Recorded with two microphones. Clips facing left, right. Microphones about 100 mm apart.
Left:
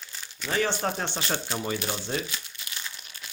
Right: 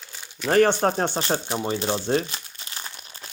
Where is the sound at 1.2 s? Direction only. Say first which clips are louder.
Right 5 dB; 25° right (ahead or behind).